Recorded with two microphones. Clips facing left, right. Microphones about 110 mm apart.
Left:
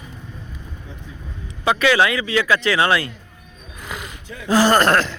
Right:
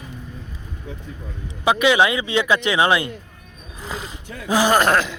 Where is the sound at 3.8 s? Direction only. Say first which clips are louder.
Right 2 dB; 30° right (ahead or behind).